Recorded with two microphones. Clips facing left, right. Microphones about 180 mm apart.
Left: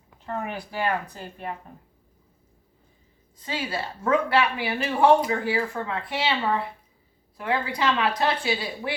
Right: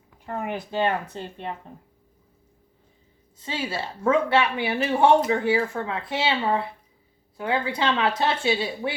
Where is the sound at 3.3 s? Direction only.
25° right (ahead or behind).